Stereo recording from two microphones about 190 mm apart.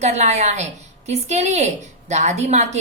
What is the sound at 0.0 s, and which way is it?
A woman's voice, 35° right (ahead or behind).